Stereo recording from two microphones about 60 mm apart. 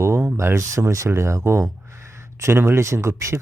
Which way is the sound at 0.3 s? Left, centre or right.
Right.